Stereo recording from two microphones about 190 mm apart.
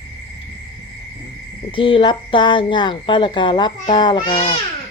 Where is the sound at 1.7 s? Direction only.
25° left (ahead or behind).